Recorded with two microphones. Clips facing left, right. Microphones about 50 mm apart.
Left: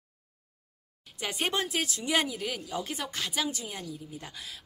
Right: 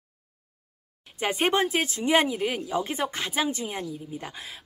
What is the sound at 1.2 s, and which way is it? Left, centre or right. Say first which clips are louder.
A woman's voice: right 7 dB; right.